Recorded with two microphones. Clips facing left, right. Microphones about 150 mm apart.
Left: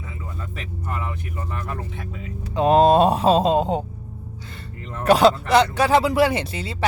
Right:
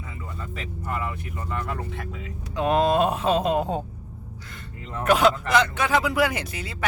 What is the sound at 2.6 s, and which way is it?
Speech, 35° left (ahead or behind).